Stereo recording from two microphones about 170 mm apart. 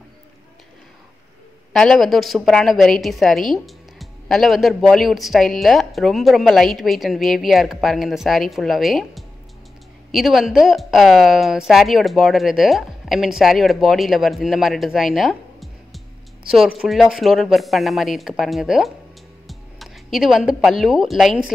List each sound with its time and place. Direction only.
1.7 s a woman's voice: centre (ahead or behind)
19.4 s a sound: centre (ahead or behind)
21.1 s a woman's voice: centre (ahead or behind)